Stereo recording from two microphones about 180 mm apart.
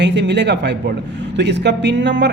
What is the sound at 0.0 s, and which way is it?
Speech, 80° right.